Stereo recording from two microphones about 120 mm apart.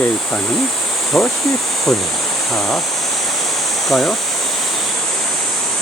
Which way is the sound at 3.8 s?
Centre (ahead or behind).